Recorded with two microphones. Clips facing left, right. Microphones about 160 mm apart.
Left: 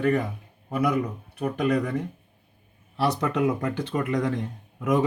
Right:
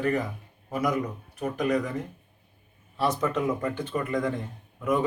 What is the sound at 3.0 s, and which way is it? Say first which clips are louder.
A man's voice: left 2 dB; 70° left (ahead or behind).